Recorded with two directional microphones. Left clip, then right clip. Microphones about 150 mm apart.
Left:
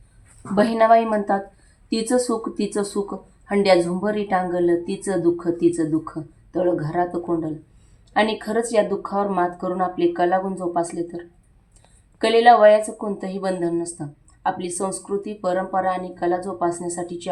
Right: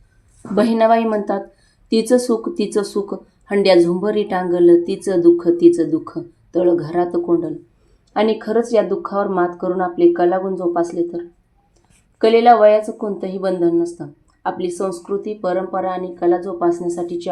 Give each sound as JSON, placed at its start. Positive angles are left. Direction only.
{"t": 0.5, "sound": "speech", "side_deg": -30}
{"t": 12.2, "sound": "speech", "side_deg": -25}